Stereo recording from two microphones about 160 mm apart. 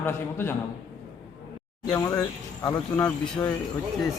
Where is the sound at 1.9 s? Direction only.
25° left (ahead or behind).